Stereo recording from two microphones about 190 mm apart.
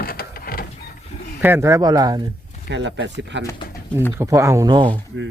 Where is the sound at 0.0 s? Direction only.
50° left (ahead or behind).